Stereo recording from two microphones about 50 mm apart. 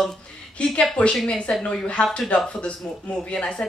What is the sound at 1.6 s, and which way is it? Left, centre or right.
Speech, left.